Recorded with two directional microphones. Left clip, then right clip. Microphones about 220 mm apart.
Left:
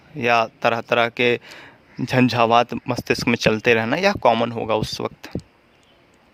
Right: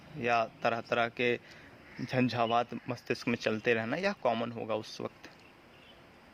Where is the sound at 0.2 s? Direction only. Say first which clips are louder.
Left 12 dB; 45° left (ahead or behind).